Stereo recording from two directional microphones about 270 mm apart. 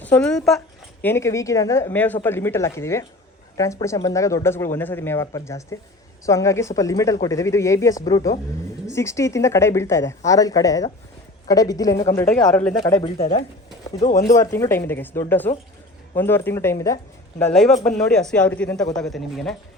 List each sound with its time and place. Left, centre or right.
0.0 s a woman's voice: centre
13.0 s speech: left
14.3 s a woman's voice: centre
17.5 s a man's voice: centre